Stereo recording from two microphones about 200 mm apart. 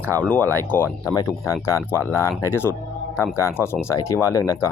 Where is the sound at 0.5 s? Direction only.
10° left (ahead or behind).